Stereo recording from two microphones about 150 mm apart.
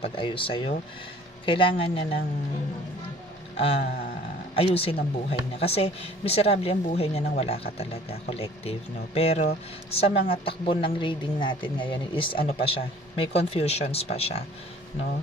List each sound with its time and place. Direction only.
0.0 s a woman's voice: 35° left (ahead or behind)
3.5 s a sound: 40° left (ahead or behind)
4.6 s a woman's voice: 40° left (ahead or behind)